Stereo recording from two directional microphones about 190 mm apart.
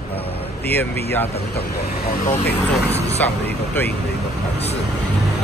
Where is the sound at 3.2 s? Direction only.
10° left (ahead or behind).